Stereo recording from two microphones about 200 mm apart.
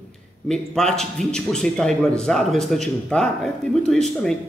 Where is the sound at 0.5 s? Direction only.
5° left (ahead or behind).